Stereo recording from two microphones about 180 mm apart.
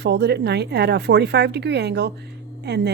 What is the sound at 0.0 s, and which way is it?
Speech, 70° right (ahead or behind).